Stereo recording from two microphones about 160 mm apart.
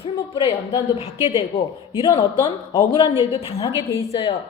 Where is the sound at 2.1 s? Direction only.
30° left (ahead or behind).